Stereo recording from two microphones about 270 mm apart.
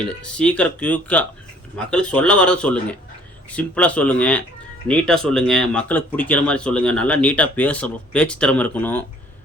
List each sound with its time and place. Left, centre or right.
0.0 s speech: centre